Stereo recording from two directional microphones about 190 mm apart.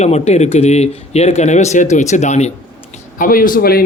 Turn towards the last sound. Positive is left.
turn(degrees=50)  # may be behind; listen again after turning